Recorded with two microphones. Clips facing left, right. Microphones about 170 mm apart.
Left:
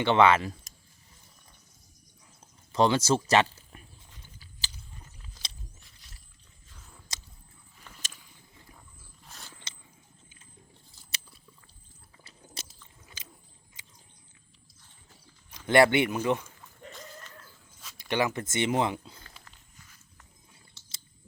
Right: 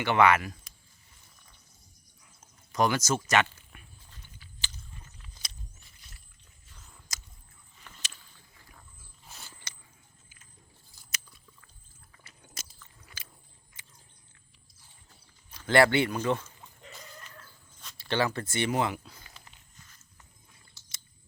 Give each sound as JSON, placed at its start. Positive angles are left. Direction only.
{"t": 0.0, "sound": "speech", "side_deg": 25}
{"t": 2.7, "sound": "speech", "side_deg": 25}
{"t": 7.1, "sound": "a sound", "side_deg": 30}
{"t": 8.1, "sound": "a sound", "side_deg": 15}
{"t": 9.2, "sound": "biting", "side_deg": 0}
{"t": 11.1, "sound": "biting", "side_deg": 30}
{"t": 12.8, "sound": "biting", "side_deg": 20}
{"t": 15.5, "sound": "speech", "side_deg": 20}
{"t": 17.9, "sound": "a sound", "side_deg": 15}
{"t": 18.3, "sound": "speech", "side_deg": 20}